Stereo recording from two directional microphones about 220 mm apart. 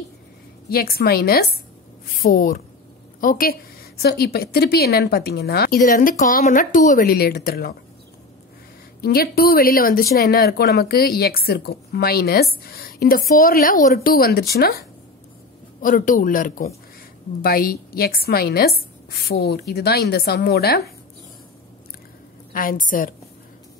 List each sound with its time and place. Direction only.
0.7 s a man's voice: 45° left (ahead or behind)
9.0 s a man's voice: 45° left (ahead or behind)
22.5 s a man's voice: 40° left (ahead or behind)